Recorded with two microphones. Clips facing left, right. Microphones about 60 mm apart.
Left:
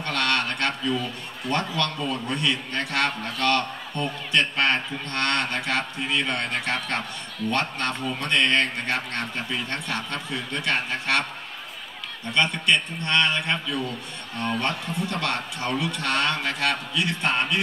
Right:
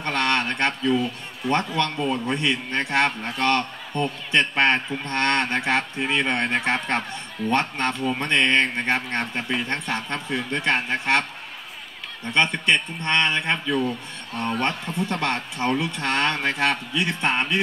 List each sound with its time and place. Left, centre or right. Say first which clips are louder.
0.0 s a sound: right 2 dB; right
1.4 s a man's voice: right 3 dB; right
12.4 s a man's voice: right 2 dB; right